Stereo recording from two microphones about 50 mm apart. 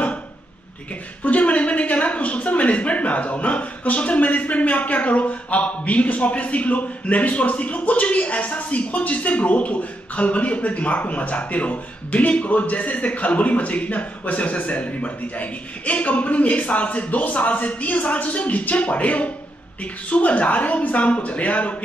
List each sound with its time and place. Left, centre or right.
1.2 s a woman's voice: left